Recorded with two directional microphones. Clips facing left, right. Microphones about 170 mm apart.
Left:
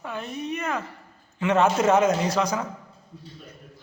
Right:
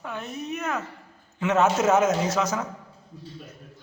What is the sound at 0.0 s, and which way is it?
A man's voice, centre (ahead or behind).